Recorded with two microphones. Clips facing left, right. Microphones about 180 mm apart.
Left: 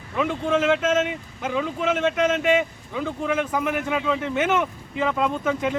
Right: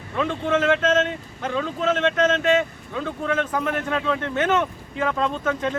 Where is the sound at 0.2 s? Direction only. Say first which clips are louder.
Even; 10° left (ahead or behind).